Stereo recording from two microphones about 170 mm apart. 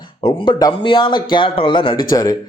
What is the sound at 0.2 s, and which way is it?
Speech, 30° left (ahead or behind).